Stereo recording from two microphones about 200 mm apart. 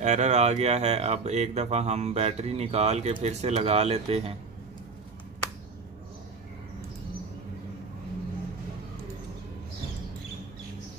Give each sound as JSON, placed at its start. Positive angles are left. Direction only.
{"t": 0.0, "sound": "speech", "side_deg": -35}